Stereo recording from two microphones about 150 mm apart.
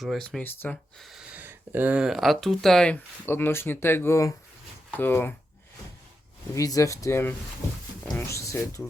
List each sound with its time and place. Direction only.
0.0 s speech: 5° left (ahead or behind)
0.9 s speech: centre (ahead or behind)
6.5 s speech: 20° left (ahead or behind)